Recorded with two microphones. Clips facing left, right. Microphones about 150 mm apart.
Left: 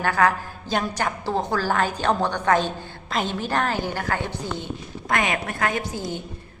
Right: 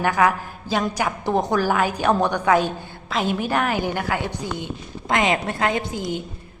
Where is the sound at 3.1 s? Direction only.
Centre (ahead or behind).